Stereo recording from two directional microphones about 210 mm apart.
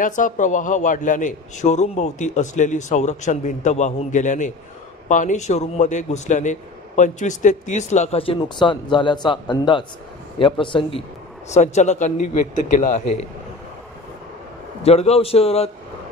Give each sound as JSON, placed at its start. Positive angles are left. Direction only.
{"t": 0.0, "sound": "a man's voice", "side_deg": 40}
{"t": 14.8, "sound": "a man's voice", "side_deg": 30}